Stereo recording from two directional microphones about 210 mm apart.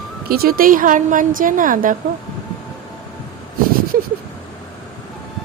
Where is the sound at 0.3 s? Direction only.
45° right (ahead or behind).